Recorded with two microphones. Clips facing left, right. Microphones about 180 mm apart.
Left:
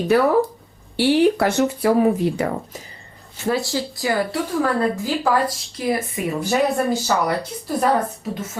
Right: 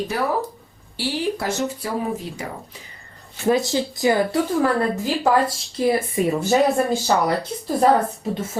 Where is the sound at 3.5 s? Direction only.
20° right (ahead or behind).